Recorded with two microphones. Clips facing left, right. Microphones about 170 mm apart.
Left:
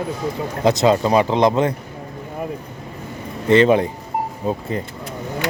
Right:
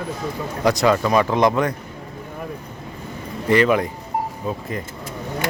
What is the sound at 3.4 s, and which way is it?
A man's voice, 25° left (ahead or behind).